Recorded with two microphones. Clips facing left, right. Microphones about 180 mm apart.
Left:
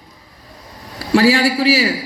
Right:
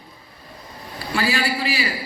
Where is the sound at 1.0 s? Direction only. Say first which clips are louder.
Left 10 dB; 90° left.